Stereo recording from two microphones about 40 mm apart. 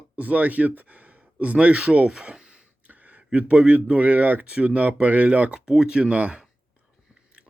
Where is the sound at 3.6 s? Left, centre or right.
Right.